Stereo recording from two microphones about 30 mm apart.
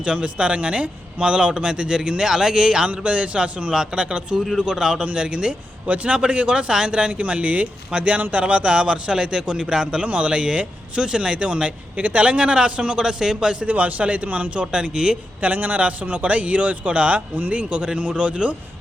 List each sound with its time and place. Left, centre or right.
0.0 s a man's voice: right
2.9 s a man's voice: right
4.6 s a man's voice: right
5.1 s a man's voice: right
5.8 s a man's voice: right
6.1 s a man's voice: right
8.7 s a man's voice: right
12.0 s speech: right
12.4 s a man's voice: right
13.0 s a man's voice: right
13.7 s speech: right
14.7 s a man's voice: right
15.4 s speech: right
15.8 s a man's voice: right